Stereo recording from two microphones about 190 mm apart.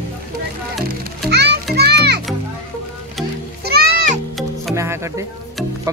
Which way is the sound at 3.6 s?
55° right (ahead or behind).